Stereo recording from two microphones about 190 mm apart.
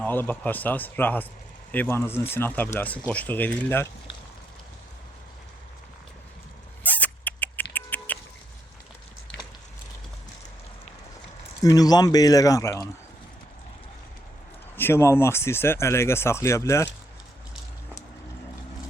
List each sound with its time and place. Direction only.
0.0 s speech: 10° left (ahead or behind)
6.8 s a sound: 10° left (ahead or behind)
11.6 s speech: 20° left (ahead or behind)
14.8 s speech: 10° left (ahead or behind)